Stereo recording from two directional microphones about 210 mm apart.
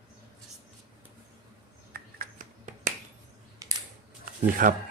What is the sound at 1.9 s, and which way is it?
Finger snapping, 40° right (ahead or behind).